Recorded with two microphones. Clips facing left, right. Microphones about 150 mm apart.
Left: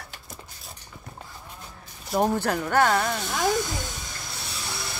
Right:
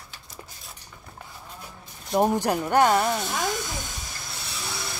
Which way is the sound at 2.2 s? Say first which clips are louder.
Right 1 dB; 15° right (ahead or behind).